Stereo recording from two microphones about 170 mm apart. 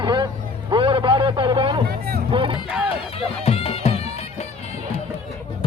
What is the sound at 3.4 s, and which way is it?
Music, 35° left (ahead or behind).